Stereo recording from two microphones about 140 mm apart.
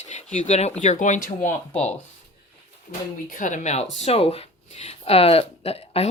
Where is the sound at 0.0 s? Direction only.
60° left (ahead or behind).